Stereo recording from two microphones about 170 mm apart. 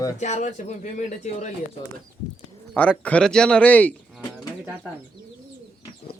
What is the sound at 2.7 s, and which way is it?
Speech, 10° left (ahead or behind).